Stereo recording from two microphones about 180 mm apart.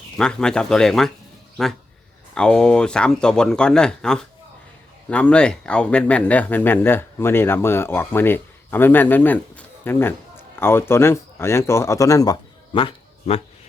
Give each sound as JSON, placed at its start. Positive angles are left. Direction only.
{"t": 0.2, "sound": "speech", "side_deg": 5}